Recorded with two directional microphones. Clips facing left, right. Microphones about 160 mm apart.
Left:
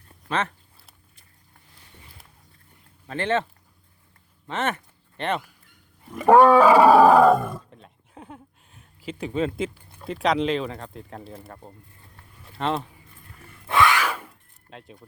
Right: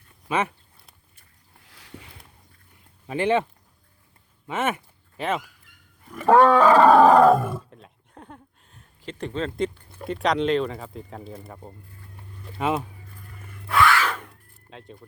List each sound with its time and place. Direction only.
0.3 s speech: 10° right (ahead or behind)
1.6 s boat: 90° right
3.1 s speech: 10° right (ahead or behind)
4.4 s a sound: 10° right (ahead or behind)
6.1 s speech: 15° left (ahead or behind); by 12.9 s 5° right (ahead or behind)
13.7 s a sound: 20° left (ahead or behind); by 15.0 s centre (ahead or behind)